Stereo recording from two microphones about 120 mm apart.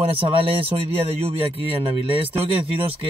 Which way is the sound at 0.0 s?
50° right (ahead or behind).